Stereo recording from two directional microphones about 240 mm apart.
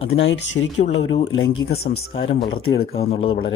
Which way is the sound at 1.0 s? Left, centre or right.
Left.